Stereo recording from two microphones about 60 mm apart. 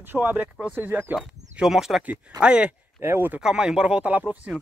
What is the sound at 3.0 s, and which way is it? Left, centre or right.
Speech, right.